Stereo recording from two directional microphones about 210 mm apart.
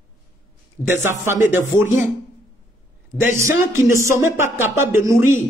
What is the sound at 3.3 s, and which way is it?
Speech, 15° right (ahead or behind).